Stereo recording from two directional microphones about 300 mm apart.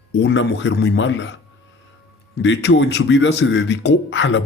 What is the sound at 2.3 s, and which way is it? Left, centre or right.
A man's voice, left.